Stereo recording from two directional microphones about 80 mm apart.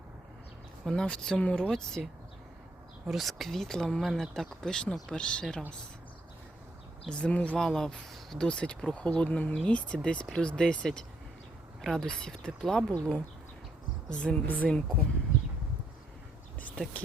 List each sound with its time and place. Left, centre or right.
0.9 s speech: centre
3.1 s speech: centre
7.1 s speech: centre
16.6 s a sound: centre